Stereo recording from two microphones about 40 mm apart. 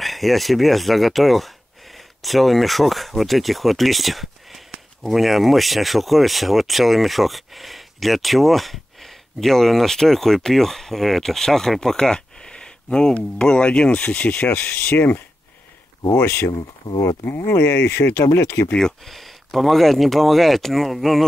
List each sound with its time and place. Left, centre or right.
0.0 s speech: centre
11.7 s a sound: centre
13.4 s speech: left
14.5 s speech: left
17.2 s speech: left
19.0 s speech: centre